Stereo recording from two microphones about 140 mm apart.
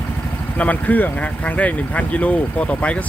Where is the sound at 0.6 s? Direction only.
10° left (ahead or behind).